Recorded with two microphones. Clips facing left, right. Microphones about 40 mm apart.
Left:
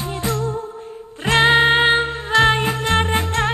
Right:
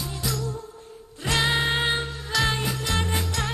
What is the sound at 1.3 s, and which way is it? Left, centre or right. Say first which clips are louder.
Music: left 10 dB; left.